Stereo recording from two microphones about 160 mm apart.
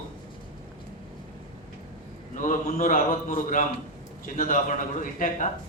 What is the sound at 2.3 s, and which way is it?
A man's voice, 55° left (ahead or behind).